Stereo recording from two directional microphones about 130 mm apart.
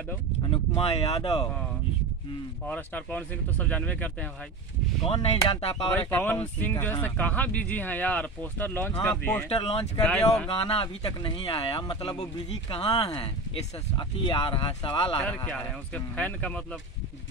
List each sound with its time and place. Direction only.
0.7 s speech: 50° left (ahead or behind)
2.7 s speech: 10° left (ahead or behind)
5.5 s speech: 50° left (ahead or behind)
5.9 s speech: 15° left (ahead or behind)
9.5 s speech: 50° left (ahead or behind)
10.0 s speech: 5° left (ahead or behind)
10.5 s speech: 45° left (ahead or behind)
13.9 s speech: 35° left (ahead or behind)
15.2 s speech: 10° left (ahead or behind)